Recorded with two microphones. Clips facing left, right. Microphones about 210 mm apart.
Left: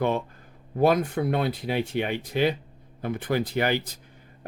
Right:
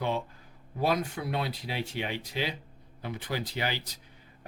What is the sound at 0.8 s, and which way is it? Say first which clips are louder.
Speech: left 7 dB; 55° left (ahead or behind).